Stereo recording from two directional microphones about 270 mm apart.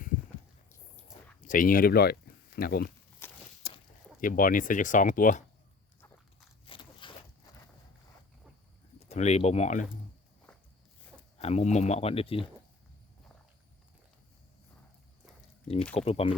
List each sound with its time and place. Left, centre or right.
1.4 s speech: left
3.2 s walk: centre
3.6 s a sound: left
4.2 s speech: left
6.7 s a sound: centre
9.0 s speech: left
11.3 s speech: left
16.0 s speech: left